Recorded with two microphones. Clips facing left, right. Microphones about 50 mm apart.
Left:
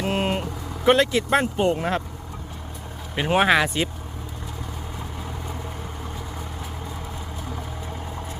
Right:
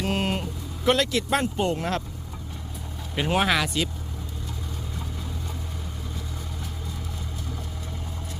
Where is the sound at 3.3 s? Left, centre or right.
Left.